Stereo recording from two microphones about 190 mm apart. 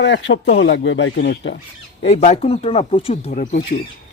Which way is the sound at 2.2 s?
35° left (ahead or behind).